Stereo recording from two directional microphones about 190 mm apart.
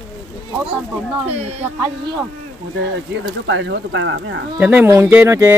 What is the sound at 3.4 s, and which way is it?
Speech, 70° right (ahead or behind).